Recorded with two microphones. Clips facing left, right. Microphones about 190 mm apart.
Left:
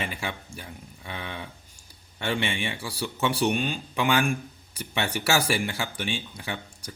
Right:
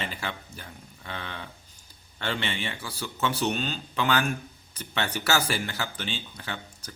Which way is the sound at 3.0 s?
15° left (ahead or behind).